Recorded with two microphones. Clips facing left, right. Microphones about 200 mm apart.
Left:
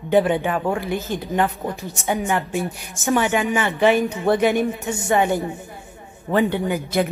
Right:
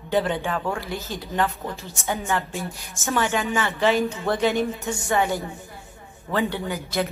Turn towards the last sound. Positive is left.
turn(degrees=15)  # may be behind; listen again after turning